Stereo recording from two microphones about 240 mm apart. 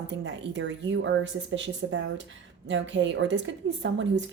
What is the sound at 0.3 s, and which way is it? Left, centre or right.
Speech, right.